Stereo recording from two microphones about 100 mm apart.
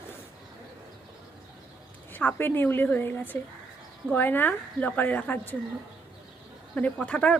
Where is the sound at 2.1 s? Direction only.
20° left (ahead or behind).